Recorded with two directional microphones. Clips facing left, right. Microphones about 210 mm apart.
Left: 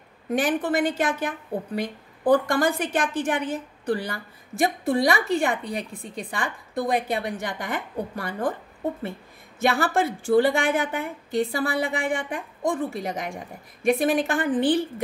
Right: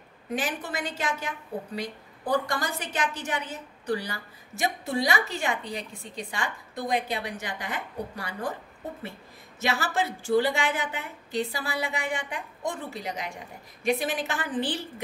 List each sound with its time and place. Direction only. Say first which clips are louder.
0.3 s a woman's voice: left 8 dB; 55° left (ahead or behind)
2.3 s a woman's voice: left 6 dB; 55° left (ahead or behind)
9.6 s a woman's voice: left 6 dB; 55° left (ahead or behind)